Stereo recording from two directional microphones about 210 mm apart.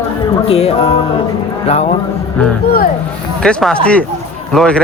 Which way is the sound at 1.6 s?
30° left (ahead or behind).